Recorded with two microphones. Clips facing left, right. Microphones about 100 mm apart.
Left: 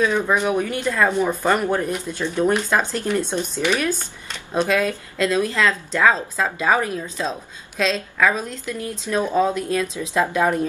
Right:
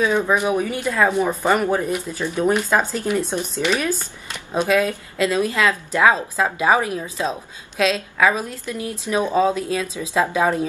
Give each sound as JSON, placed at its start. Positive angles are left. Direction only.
{"t": 0.0, "sound": "speech", "side_deg": -10}